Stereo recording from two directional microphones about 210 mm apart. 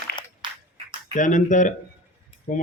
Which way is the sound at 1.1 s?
35° left (ahead or behind).